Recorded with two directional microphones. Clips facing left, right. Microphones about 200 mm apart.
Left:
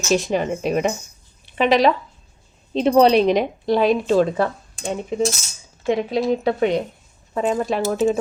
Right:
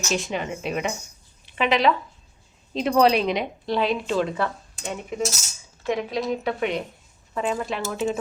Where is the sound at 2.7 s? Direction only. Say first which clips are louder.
Left 5 dB; 25° left (ahead or behind).